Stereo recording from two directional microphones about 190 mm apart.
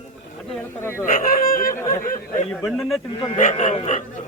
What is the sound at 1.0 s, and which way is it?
Speech, 45° left (ahead or behind).